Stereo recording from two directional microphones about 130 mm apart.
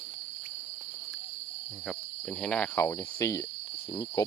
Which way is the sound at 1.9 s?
5° left (ahead or behind).